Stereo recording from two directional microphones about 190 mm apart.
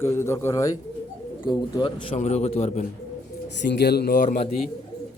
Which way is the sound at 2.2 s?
35° left (ahead or behind).